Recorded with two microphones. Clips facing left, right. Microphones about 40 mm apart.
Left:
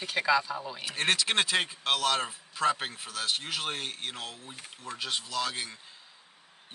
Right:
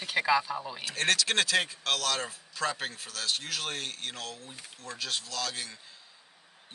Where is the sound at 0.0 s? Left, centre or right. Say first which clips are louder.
Even; centre.